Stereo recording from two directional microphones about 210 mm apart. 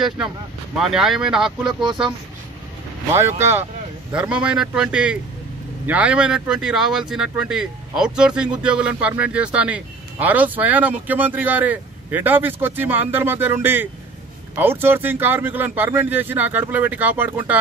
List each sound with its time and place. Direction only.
0.7 s a man's voice: centre (ahead or behind)
1.7 s speech: 20° right (ahead or behind)
3.1 s a man's voice: 10° right (ahead or behind)